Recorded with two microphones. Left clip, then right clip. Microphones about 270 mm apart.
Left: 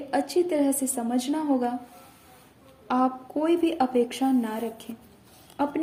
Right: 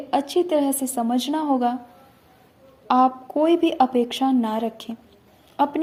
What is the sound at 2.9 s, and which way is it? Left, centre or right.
A woman's voice, right.